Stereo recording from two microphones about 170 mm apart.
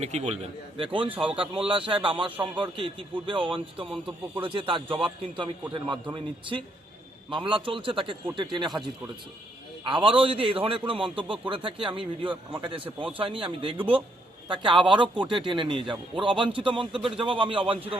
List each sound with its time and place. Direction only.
0.0 s a man's voice: 40° right (ahead or behind)
1.1 s speech: 5° right (ahead or behind)
1.4 s a man's voice: 30° right (ahead or behind)
9.8 s a man's voice: 30° right (ahead or behind)